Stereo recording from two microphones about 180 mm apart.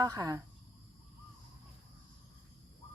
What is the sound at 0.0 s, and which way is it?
Speech, 20° right (ahead or behind).